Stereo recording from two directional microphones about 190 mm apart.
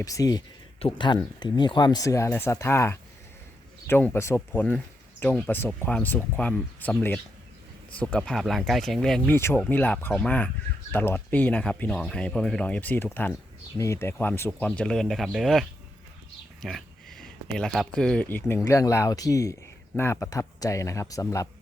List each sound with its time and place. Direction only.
0.0 s speech: 20° left (ahead or behind)